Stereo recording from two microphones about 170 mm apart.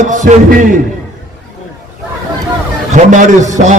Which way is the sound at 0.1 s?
50° right (ahead or behind).